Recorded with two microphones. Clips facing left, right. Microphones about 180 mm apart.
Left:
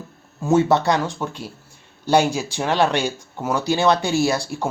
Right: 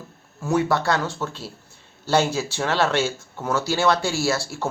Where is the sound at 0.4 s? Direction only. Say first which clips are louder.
Left 4 dB; 25° left (ahead or behind).